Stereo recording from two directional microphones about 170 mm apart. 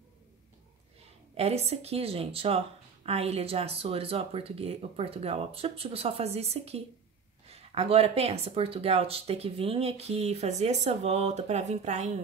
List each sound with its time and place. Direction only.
1.3 s speech: 35° right (ahead or behind)